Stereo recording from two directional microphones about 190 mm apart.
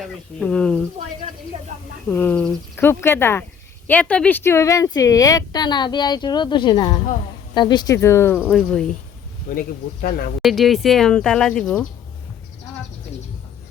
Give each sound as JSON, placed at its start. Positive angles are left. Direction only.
{"t": 0.0, "sound": "speech", "side_deg": 5}
{"t": 1.7, "sound": "speech", "side_deg": -40}
{"t": 2.0, "sound": "speech", "side_deg": 10}
{"t": 9.6, "sound": "speech", "side_deg": 50}
{"t": 10.4, "sound": "speech", "side_deg": 0}